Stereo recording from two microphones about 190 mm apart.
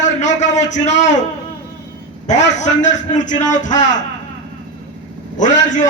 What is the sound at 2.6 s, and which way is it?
A man's voice, 40° left (ahead or behind).